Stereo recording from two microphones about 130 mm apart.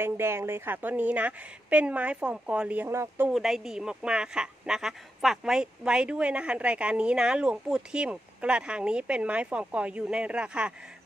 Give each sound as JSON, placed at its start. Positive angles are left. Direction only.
{"t": 0.0, "sound": "a woman's voice", "side_deg": -20}
{"t": 3.3, "sound": "a woman's voice", "side_deg": -5}